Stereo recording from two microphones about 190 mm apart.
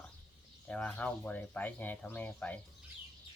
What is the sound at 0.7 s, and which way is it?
Speech, 5° left (ahead or behind).